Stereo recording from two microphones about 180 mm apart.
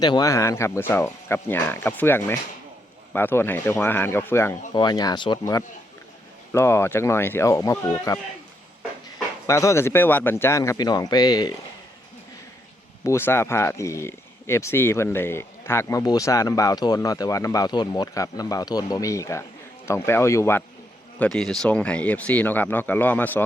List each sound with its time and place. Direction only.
0.0 s speech: 20° left (ahead or behind)
4.7 s speech: 25° left (ahead or behind)
9.5 s speech: 15° left (ahead or behind)
13.1 s speech: 15° left (ahead or behind)